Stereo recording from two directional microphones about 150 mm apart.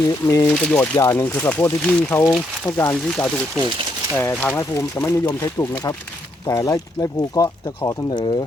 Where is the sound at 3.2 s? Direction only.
5° left (ahead or behind).